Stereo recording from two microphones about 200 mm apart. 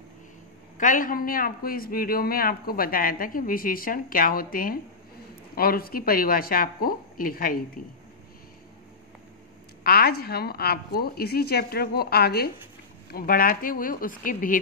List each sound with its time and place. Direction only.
0.7 s a man's voice: 40° left (ahead or behind)
9.8 s a man's voice: 50° left (ahead or behind)